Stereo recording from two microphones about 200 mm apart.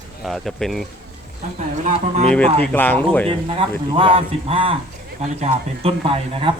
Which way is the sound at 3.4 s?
25° right (ahead or behind).